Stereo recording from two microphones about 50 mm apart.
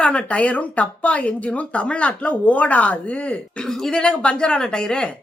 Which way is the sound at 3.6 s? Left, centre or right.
Centre.